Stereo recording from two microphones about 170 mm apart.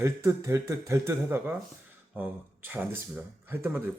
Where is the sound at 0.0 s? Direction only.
15° right (ahead or behind).